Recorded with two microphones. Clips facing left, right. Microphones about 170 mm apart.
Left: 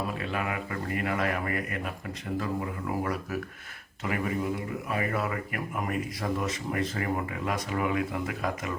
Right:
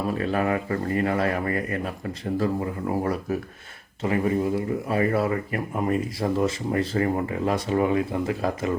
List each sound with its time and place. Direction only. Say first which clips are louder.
0.1 s speech: right 8 dB; 40° right (ahead or behind)